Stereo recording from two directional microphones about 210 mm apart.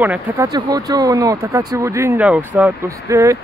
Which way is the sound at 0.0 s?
10° right (ahead or behind).